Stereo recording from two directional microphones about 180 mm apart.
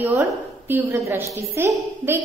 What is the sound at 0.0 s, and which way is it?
A woman's voice, 15° right (ahead or behind).